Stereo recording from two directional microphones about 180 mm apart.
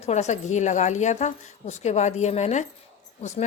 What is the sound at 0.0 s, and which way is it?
A woman's voice, 40° left (ahead or behind).